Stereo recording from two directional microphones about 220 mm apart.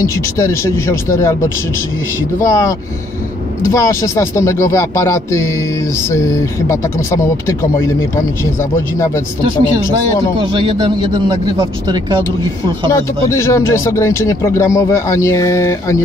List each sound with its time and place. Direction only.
0.0 s speech: 15° left (ahead or behind)
8.9 s speech: 15° left (ahead or behind)
10.4 s speech: 20° right (ahead or behind)
12.9 s speech: 10° left (ahead or behind)